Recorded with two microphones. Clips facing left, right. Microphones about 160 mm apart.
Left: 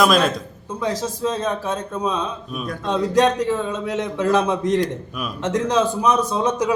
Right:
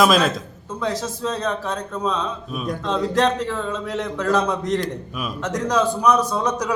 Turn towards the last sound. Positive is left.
turn(degrees=20)  # may be behind; listen again after turning